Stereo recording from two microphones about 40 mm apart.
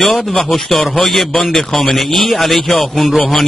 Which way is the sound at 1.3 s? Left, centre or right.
Centre.